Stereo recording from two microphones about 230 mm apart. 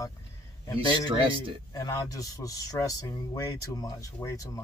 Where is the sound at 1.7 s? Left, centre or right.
Centre.